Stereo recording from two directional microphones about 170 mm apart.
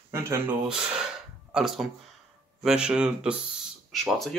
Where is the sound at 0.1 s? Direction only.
15° right (ahead or behind).